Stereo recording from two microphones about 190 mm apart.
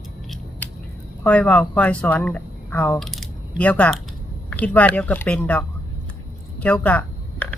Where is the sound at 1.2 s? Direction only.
10° left (ahead or behind).